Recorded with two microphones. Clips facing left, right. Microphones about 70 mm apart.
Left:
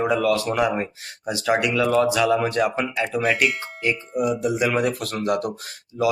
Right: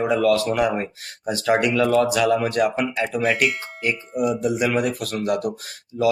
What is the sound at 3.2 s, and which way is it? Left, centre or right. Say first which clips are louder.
Speech: right 1 dB; centre.